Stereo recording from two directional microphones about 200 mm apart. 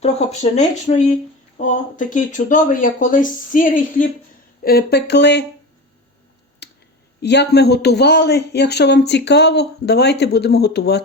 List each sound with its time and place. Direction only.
0.0 s speech: 35° left (ahead or behind)
4.6 s speech: 50° left (ahead or behind)
6.6 s clicking: 55° left (ahead or behind)
7.2 s speech: 55° left (ahead or behind)